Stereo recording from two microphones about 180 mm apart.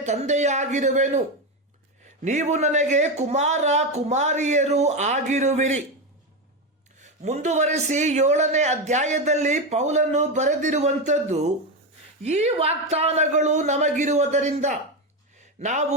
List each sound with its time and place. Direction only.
0.0 s a man's voice: 40° right (ahead or behind)
2.2 s a man's voice: 40° right (ahead or behind)
7.0 s a man's voice: 40° right (ahead or behind)